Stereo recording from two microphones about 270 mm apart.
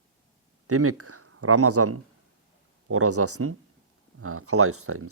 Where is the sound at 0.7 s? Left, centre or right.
Right.